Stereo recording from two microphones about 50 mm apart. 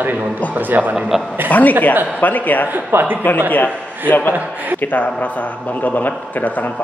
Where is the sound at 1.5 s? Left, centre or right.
Left.